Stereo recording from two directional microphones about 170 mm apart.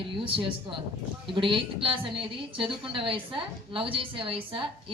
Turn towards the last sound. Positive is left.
turn(degrees=-30)  # may be behind; listen again after turning